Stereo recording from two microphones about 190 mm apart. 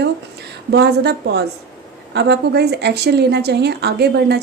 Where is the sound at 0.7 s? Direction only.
60° right (ahead or behind).